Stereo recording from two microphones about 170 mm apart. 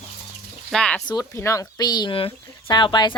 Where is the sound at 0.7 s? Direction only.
5° left (ahead or behind).